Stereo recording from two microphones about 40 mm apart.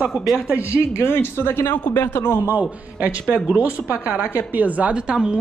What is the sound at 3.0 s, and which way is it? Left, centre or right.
A woman's voice, right.